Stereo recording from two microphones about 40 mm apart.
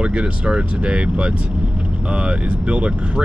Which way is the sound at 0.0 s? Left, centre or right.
Right.